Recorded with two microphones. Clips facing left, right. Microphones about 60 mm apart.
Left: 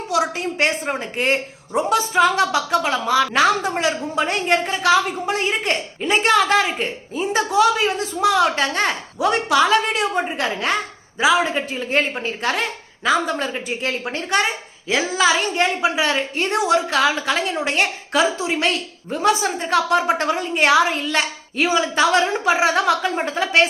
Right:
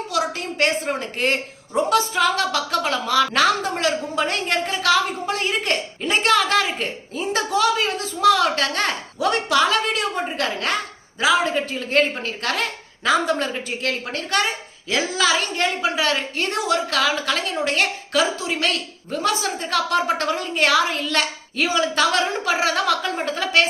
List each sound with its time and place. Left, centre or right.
0.1 s a woman's voice: centre
13.1 s a woman's voice: centre